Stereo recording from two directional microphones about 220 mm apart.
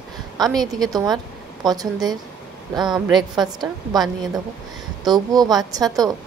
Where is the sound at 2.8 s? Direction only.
Centre (ahead or behind).